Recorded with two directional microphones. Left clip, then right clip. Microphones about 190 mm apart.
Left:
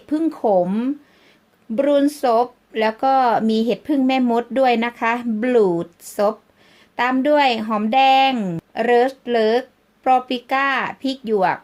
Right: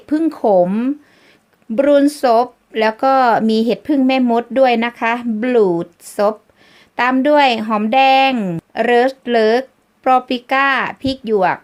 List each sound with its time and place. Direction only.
0.0 s a woman's voice: 15° right (ahead or behind)